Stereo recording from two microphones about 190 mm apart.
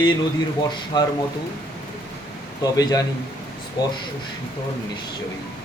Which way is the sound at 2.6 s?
20° left (ahead or behind).